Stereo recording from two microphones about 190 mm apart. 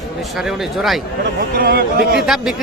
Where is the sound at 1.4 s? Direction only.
50° right (ahead or behind).